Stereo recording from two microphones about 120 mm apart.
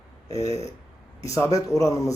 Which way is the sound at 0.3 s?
30° left (ahead or behind).